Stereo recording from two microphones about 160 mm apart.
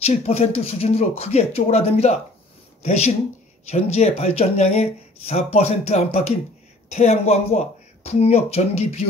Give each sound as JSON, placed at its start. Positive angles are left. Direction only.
{"t": 0.0, "sound": "speech", "side_deg": 40}